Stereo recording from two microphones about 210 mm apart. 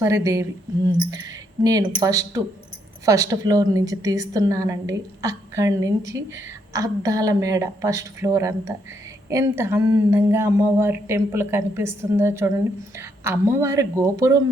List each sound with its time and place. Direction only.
0.0 s a woman's voice: 15° right (ahead or behind)